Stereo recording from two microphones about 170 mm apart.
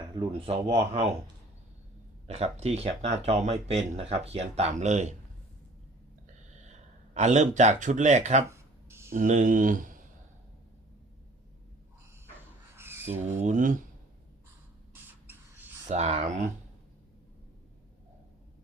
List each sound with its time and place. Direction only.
0.2 s speech: 35° right (ahead or behind)
2.2 s speech: 40° right (ahead or behind)
7.1 s speech: 45° right (ahead or behind)
8.4 s a sound: 15° right (ahead or behind)
9.1 s speech: 50° right (ahead or behind)
12.7 s a sound: 15° right (ahead or behind)
13.3 s speech: 45° right (ahead or behind)
14.9 s rodents: 10° right (ahead or behind)
15.9 s speech: 40° right (ahead or behind)